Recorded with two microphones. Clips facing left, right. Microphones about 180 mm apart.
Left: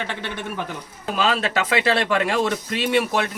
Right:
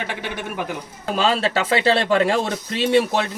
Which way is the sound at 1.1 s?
30° right (ahead or behind).